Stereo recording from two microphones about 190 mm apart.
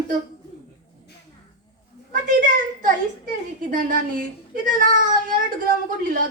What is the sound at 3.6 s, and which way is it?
A child's voice, 45° right (ahead or behind).